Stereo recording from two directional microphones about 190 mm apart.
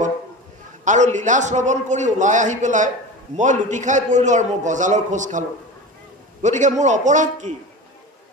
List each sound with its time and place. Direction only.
0.8 s a man's voice: 40° right (ahead or behind)
6.4 s a man's voice: 40° right (ahead or behind)